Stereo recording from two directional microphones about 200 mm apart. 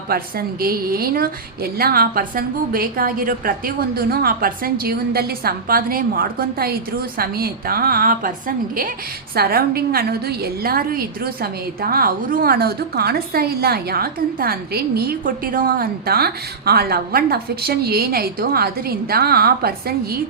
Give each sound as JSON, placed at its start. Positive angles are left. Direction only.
{"t": 0.1, "sound": "a woman's voice", "side_deg": -50}